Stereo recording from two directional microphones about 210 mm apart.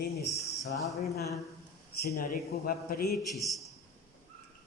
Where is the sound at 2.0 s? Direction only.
45° left (ahead or behind).